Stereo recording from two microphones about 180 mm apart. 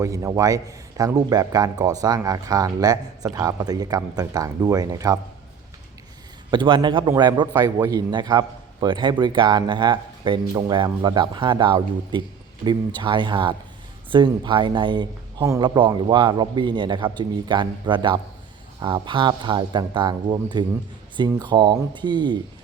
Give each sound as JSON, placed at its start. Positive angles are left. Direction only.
{"t": 0.0, "sound": "a man's voice", "side_deg": -15}
{"t": 6.5, "sound": "a man's voice", "side_deg": -25}